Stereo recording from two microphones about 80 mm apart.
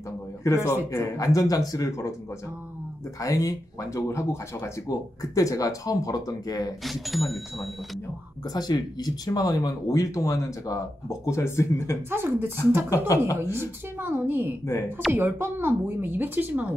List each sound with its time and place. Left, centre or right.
0.4 s a man's voice: left
3.2 s speech: left
6.8 s speech: centre
8.5 s speech: left
12.1 s speech: right
12.9 s a man's voice: left
13.4 s speech: right